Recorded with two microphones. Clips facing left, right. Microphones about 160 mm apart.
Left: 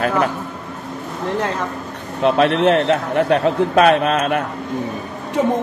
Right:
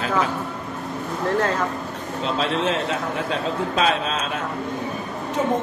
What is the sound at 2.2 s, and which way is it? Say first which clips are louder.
A man's voice: left 9 dB; 65° left (ahead or behind).